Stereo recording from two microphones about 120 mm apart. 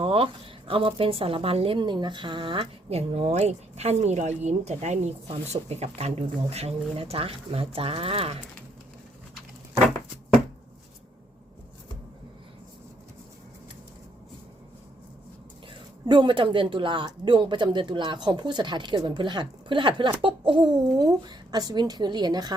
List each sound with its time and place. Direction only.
0.0 s a woman's voice: 50° right (ahead or behind)
16.0 s speech: 40° right (ahead or behind)